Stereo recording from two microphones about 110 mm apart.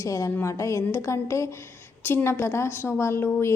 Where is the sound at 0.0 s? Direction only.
30° left (ahead or behind).